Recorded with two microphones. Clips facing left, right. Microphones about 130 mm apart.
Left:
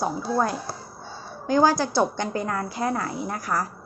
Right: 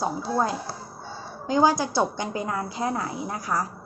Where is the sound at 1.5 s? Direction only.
20° right (ahead or behind).